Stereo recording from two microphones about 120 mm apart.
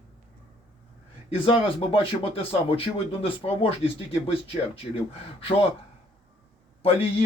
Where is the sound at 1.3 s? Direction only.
50° left (ahead or behind).